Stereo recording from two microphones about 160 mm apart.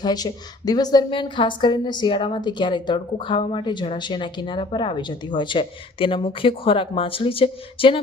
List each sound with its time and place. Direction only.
0.0 s a woman's voice: 25° left (ahead or behind)